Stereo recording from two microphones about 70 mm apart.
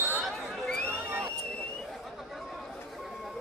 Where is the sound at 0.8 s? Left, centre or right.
Right.